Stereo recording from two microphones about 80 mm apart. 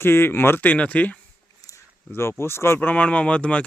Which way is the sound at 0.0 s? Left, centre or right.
Left.